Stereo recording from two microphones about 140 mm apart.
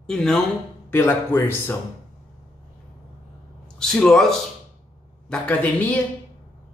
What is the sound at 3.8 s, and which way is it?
A man's voice, 5° left (ahead or behind).